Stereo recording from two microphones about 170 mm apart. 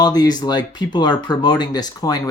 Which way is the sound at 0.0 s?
25° left (ahead or behind).